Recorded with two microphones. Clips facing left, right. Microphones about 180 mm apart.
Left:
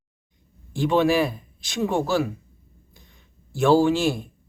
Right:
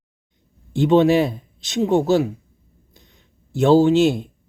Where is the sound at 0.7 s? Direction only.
25° right (ahead or behind).